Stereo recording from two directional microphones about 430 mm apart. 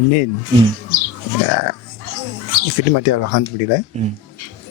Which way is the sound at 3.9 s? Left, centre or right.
Centre.